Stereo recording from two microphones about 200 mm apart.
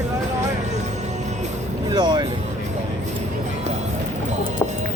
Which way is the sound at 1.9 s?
20° right (ahead or behind).